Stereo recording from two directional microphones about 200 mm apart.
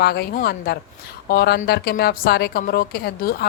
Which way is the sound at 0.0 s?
55° left (ahead or behind).